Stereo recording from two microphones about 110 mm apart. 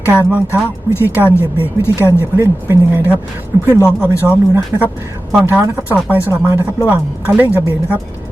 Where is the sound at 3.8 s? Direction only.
25° left (ahead or behind).